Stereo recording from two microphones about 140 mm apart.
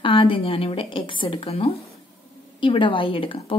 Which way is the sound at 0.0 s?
40° left (ahead or behind).